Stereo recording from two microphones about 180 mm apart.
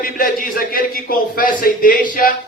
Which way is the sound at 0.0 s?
55° left (ahead or behind).